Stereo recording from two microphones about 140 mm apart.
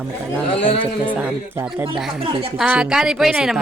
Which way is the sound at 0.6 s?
40° left (ahead or behind).